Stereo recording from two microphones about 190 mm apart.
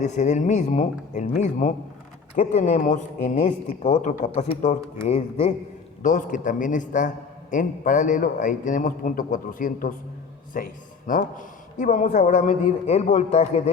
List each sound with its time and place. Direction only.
0.0 s a man's voice: 40° left (ahead or behind)